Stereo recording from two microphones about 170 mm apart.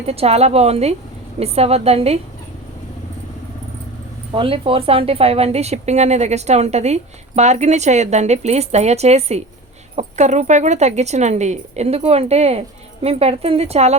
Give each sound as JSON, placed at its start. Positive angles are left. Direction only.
{"t": 0.0, "sound": "speech", "side_deg": -35}
{"t": 4.4, "sound": "speech", "side_deg": -30}